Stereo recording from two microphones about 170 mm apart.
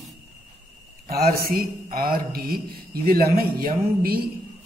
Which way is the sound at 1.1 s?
65° right (ahead or behind).